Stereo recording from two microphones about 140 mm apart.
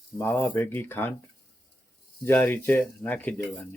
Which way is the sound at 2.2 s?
15° left (ahead or behind).